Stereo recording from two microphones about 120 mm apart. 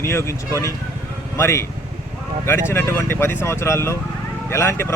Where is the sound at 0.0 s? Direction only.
20° left (ahead or behind).